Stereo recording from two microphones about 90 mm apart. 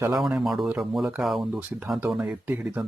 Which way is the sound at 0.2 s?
5° right (ahead or behind).